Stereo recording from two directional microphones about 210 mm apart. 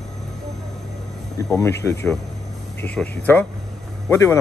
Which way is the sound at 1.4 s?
15° left (ahead or behind).